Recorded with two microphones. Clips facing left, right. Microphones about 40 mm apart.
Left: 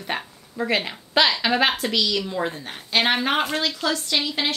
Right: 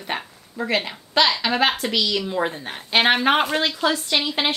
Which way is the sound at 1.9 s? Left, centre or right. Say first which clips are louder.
Right 1 dB; centre.